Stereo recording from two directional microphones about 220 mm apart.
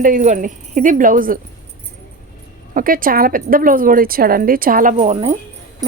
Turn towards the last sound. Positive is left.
turn(degrees=-30)  # may be behind; listen again after turning